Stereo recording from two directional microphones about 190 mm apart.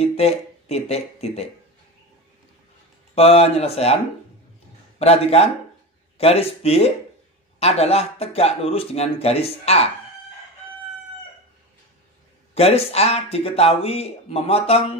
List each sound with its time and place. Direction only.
0.0 s speech: 35° left (ahead or behind)
3.2 s a man's voice: 30° left (ahead or behind)
12.5 s speech: 30° left (ahead or behind)